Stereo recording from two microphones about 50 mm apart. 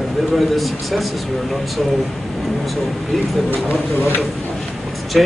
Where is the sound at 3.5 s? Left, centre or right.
Left.